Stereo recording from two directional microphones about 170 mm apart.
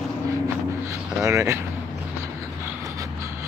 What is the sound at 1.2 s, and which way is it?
Speech, 20° right (ahead or behind).